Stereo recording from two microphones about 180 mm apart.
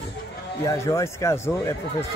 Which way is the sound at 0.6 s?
15° left (ahead or behind).